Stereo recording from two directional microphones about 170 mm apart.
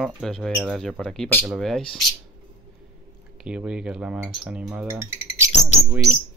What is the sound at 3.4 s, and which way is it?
Speech, 5° right (ahead or behind).